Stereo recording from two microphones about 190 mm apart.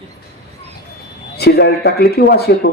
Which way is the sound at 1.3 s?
60° left (ahead or behind).